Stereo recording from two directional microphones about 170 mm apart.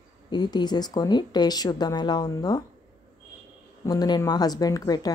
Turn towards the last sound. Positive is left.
turn(degrees=20)  # may be behind; listen again after turning